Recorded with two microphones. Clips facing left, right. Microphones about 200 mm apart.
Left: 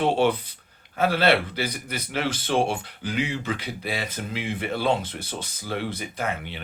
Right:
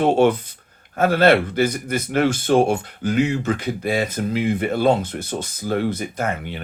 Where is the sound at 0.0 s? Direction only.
45° right (ahead or behind).